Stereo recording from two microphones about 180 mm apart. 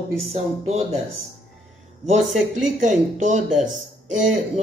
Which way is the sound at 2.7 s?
45° right (ahead or behind).